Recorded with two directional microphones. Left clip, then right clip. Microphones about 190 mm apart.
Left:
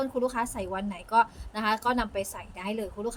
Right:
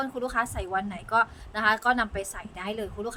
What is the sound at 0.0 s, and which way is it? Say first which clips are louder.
A woman's voice: even; 20° right (ahead or behind).